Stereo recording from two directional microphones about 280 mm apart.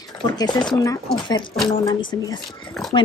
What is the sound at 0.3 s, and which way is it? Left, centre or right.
A woman's voice, centre.